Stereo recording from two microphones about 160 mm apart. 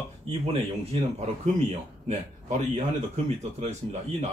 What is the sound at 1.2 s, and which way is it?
A man's voice, 45° right (ahead or behind).